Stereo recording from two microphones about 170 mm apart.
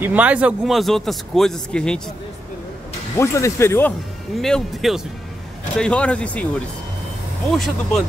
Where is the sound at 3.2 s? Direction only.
15° left (ahead or behind).